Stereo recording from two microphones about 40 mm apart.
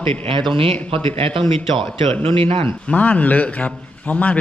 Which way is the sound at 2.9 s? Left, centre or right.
Left.